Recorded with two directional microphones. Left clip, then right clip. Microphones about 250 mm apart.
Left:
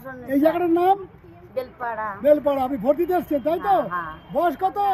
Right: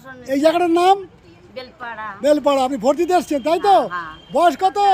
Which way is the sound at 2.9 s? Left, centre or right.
Right.